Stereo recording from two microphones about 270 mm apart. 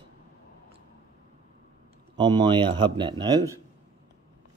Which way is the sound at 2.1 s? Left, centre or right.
Centre.